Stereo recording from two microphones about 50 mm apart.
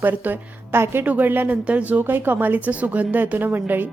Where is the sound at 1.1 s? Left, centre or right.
Right.